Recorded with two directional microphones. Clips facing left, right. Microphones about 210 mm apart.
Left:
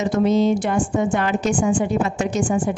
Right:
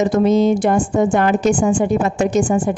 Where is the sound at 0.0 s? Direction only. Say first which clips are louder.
Right 4 dB; 45° right (ahead or behind).